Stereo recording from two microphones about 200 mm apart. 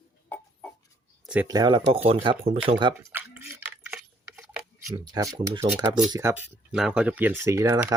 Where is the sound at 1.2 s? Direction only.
5° right (ahead or behind).